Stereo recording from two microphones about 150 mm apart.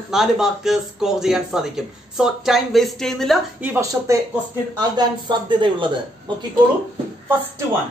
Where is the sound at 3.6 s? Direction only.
10° right (ahead or behind).